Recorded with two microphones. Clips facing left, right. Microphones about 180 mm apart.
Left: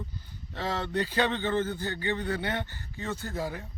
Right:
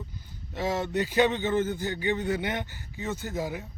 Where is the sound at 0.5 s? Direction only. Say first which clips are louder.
Right 3 dB; 10° right (ahead or behind).